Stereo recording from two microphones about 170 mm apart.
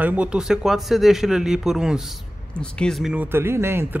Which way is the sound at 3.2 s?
15° right (ahead or behind).